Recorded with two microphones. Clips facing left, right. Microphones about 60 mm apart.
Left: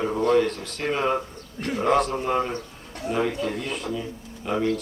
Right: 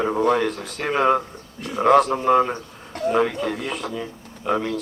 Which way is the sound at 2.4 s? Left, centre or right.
Right.